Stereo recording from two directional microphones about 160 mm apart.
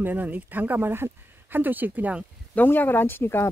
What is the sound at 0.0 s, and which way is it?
Speech, 10° right (ahead or behind).